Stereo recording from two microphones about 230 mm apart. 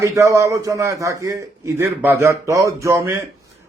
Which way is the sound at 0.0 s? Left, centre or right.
Centre.